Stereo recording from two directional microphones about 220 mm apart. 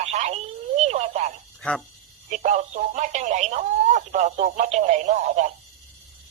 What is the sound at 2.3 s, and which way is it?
A woman's voice, 35° right (ahead or behind).